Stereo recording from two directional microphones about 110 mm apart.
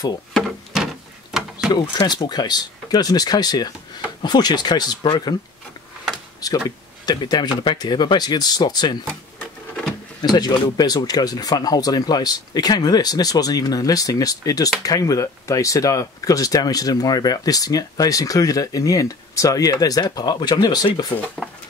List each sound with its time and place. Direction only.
0.3 s drawer open or close: centre (ahead or behind)
1.3 s a sound: 5° right (ahead or behind)
1.7 s speech: 40° left (ahead or behind)
6.4 s speech: 35° left (ahead or behind)
10.2 s speech: 40° left (ahead or behind)